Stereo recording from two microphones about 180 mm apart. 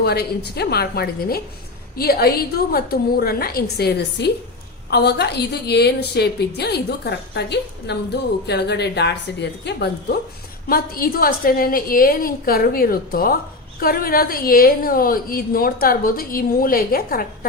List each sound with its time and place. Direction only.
0.0 s a woman's voice: 65° left (ahead or behind)
10.7 s a woman's voice: 55° left (ahead or behind)